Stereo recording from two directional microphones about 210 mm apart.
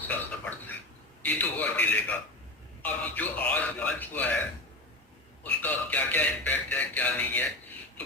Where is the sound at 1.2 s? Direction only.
10° left (ahead or behind).